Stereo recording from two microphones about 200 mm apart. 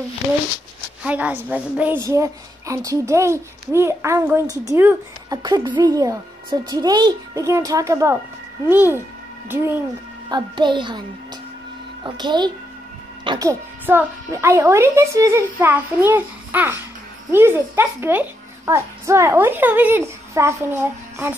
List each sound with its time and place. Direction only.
1.0 s a woman's voice: 5° right (ahead or behind)
10.3 s a child's voice: 25° right (ahead or behind)